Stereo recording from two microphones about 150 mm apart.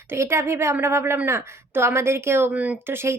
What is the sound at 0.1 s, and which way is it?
A woman's voice, 15° right (ahead or behind).